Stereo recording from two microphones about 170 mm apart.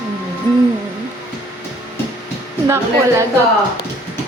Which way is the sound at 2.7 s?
15° right (ahead or behind).